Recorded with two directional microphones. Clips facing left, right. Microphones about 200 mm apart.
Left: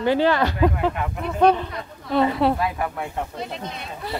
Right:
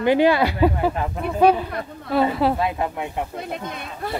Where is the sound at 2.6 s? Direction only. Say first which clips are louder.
Right 2 dB; 20° right (ahead or behind).